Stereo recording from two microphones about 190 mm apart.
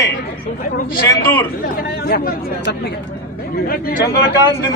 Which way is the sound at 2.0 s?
55° left (ahead or behind).